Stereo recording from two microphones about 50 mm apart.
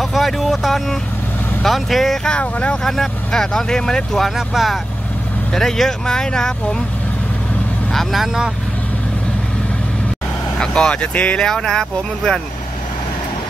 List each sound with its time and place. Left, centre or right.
0.0 s speech: centre
2.4 s speech: left
2.8 s speech: centre
4.4 s speech: centre
7.9 s speech: centre
10.6 s speech: centre
11.4 s speech: centre